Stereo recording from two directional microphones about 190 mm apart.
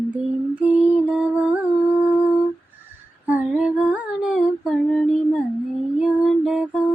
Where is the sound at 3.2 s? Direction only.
10° right (ahead or behind).